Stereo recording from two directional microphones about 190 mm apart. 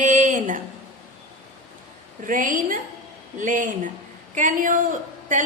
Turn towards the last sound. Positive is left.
turn(degrees=-40)  # may be behind; listen again after turning